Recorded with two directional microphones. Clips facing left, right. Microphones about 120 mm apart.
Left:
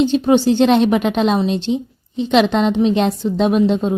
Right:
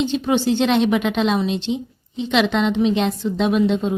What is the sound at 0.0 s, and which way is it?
A woman's voice, 35° left (ahead or behind).